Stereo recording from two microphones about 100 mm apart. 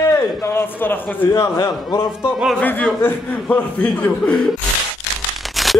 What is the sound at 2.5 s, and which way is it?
Speech, 15° left (ahead or behind).